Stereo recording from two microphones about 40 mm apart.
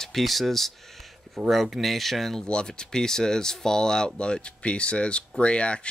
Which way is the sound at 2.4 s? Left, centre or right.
Left.